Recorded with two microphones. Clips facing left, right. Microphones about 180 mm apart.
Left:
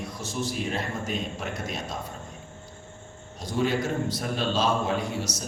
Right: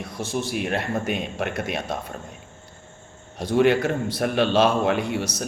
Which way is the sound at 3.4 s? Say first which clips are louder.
Right 7 dB; 65° right (ahead or behind).